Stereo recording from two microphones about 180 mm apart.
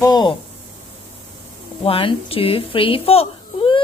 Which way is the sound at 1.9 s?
30° left (ahead or behind).